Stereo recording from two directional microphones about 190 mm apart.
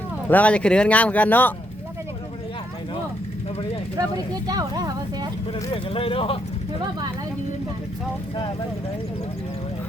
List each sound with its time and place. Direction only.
0.3 s speech: 10° left (ahead or behind)
4.4 s speech: 20° right (ahead or behind)
5.7 s speech: 30° left (ahead or behind)